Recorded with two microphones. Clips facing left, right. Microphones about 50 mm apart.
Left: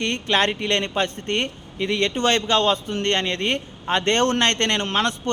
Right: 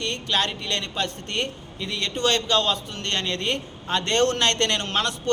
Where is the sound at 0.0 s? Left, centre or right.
Left.